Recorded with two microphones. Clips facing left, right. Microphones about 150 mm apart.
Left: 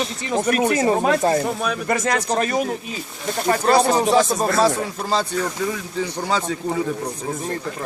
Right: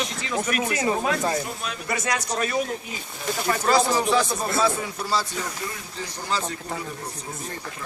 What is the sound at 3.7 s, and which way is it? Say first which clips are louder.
Speech: left 4 dB; 65° left (ahead or behind).